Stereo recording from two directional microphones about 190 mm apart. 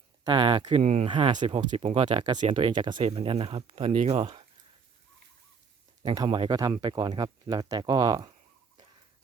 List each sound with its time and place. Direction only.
0.3 s speech: 25° right (ahead or behind)
6.0 s speech: 20° right (ahead or behind)